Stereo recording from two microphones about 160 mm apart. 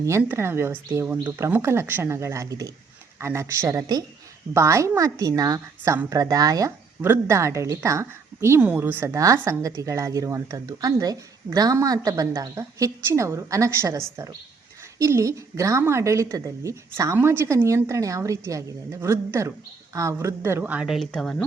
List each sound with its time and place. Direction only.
0.2 s a woman's voice: 15° right (ahead or behind); by 21.4 s 5° left (ahead or behind)